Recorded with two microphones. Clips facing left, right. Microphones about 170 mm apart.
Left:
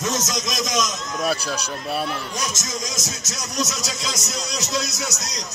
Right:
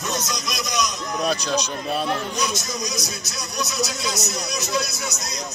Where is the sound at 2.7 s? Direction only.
90° left.